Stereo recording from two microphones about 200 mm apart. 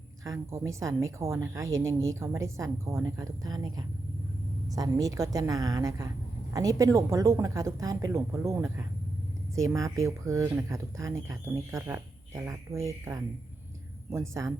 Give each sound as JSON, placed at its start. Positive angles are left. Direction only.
{"t": 0.3, "sound": "speech", "side_deg": -15}